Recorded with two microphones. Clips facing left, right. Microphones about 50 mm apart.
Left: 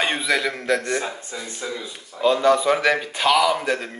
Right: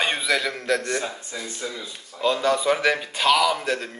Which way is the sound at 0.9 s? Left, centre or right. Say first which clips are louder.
Left 2 dB; left.